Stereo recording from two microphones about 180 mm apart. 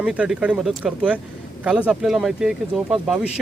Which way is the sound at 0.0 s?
5° right (ahead or behind).